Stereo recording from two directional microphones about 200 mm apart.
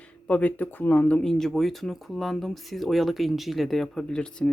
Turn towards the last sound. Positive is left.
turn(degrees=5)  # may be behind; listen again after turning